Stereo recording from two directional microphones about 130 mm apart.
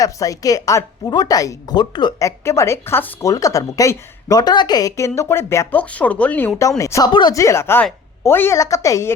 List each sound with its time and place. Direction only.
0.0 s a woman's voice: 25° left (ahead or behind); by 6.5 s 10° left (ahead or behind)
6.6 s a woman's voice: 25° left (ahead or behind)
7.1 s speech: 35° left (ahead or behind)
7.3 s a woman's voice: 20° left (ahead or behind)